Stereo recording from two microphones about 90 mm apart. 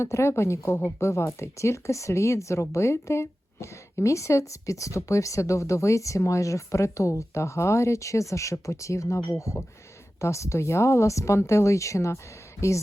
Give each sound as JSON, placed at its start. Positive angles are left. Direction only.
{"t": 0.0, "sound": "speech", "side_deg": 30}